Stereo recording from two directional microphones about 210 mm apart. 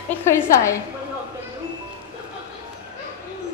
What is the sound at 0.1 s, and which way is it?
Speech, 15° left (ahead or behind).